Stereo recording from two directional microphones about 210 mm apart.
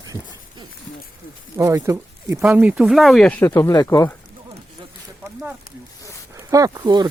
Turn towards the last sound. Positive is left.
turn(degrees=-20)  # may be behind; listen again after turning